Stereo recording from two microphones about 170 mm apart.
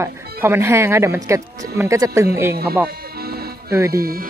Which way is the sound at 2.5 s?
65° right (ahead or behind).